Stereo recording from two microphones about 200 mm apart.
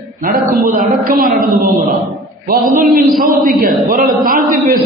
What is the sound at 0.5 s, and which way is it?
A man's voice, 45° right (ahead or behind).